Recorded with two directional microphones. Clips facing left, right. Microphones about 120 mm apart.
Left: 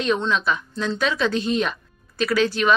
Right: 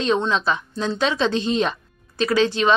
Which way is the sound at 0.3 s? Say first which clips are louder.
Right 1 dB; 30° right (ahead or behind).